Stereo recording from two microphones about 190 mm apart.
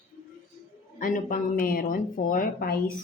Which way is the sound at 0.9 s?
45° left (ahead or behind).